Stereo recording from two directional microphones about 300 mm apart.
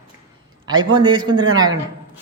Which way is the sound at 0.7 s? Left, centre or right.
Centre.